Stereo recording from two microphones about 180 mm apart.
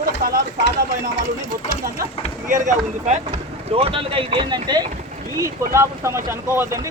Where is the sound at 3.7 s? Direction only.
30° right (ahead or behind).